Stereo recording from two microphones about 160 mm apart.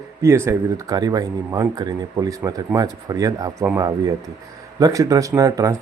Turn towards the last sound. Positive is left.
turn(degrees=-20)  # may be behind; listen again after turning